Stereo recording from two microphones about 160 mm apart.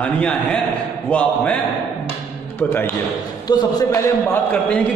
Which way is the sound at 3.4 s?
25° left (ahead or behind).